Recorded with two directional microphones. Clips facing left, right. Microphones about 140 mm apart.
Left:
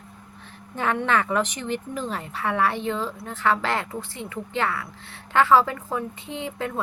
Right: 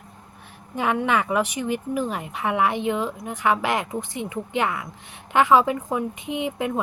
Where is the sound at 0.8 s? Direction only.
10° right (ahead or behind).